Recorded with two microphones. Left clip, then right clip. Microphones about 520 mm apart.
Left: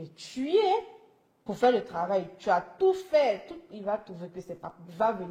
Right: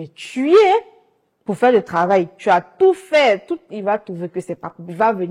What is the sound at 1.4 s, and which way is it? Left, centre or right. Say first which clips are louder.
A woman's voice: right 10 dB; right.